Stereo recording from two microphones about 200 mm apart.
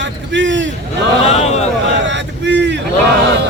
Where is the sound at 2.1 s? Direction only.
65° right (ahead or behind).